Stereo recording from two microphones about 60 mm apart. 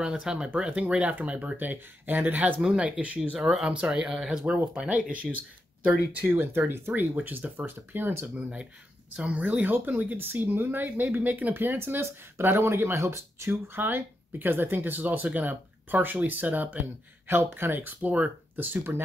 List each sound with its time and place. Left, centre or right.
0.0 s speech: centre
3.3 s speech: centre
4.7 s speech: right
6.9 s speech: right
8.4 s speech: centre; by 13.5 s right
13.5 s speech: right
17.3 s speech: right